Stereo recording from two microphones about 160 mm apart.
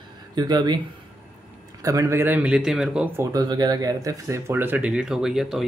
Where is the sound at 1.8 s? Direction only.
20° right (ahead or behind); by 3.1 s 5° right (ahead or behind).